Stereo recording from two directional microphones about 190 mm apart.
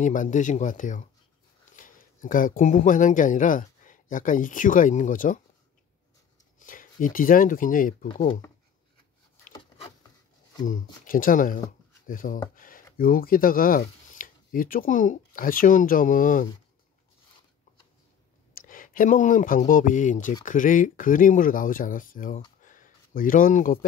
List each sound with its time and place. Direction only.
0.0 s speech: 40° left (ahead or behind)
6.6 s speech: 45° left (ahead or behind)
10.6 s speech: 45° left (ahead or behind)
18.5 s speech: 45° left (ahead or behind)
22.6 s a sound: 45° left (ahead or behind)